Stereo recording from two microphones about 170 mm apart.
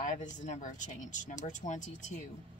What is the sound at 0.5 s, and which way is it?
Speech, 45° left (ahead or behind).